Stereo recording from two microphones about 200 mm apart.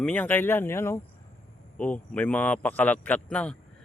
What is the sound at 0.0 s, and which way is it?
Speech, 10° left (ahead or behind).